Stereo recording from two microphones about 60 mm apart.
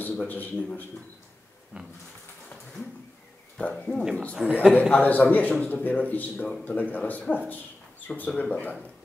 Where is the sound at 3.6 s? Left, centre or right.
Left.